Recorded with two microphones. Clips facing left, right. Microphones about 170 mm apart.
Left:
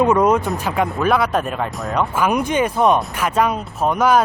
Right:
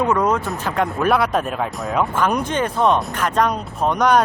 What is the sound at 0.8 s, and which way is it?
Speech, centre (ahead or behind).